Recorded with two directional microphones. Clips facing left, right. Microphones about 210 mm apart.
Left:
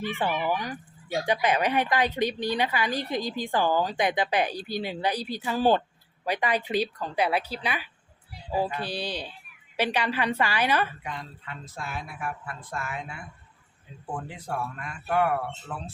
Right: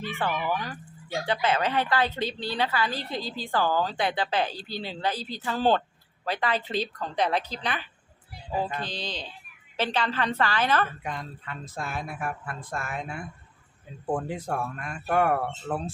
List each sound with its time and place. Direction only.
0.0 s speech: 15° left (ahead or behind)
11.0 s speech: 45° right (ahead or behind)